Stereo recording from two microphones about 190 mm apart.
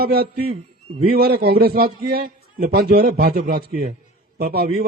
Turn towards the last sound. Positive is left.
turn(degrees=-55)  # may be behind; listen again after turning